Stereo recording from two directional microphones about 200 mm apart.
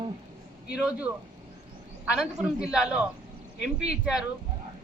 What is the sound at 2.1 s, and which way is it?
A woman's voice, 5° right (ahead or behind).